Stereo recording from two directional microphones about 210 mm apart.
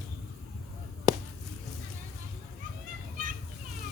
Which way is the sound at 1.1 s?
15° right (ahead or behind).